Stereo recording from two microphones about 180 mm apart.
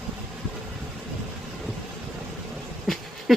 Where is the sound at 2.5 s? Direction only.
Centre (ahead or behind).